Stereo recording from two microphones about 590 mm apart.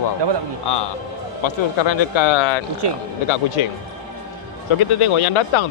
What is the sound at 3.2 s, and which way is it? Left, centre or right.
Speech, left.